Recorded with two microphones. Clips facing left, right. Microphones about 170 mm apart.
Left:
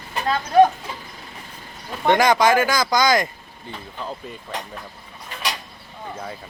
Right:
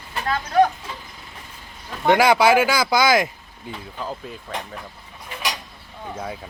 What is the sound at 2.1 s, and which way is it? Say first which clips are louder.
Speech: right 1 dB; 10° right (ahead or behind).